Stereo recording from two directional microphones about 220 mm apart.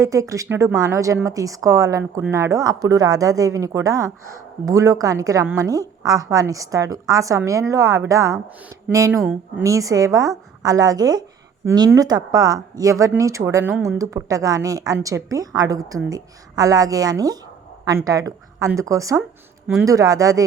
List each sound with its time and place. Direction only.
0.0 s a woman's voice: 15° right (ahead or behind)